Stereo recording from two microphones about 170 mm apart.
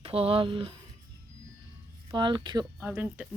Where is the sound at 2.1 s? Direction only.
25° right (ahead or behind).